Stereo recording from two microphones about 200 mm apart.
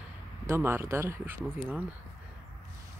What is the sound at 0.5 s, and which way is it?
Speech, 10° right (ahead or behind).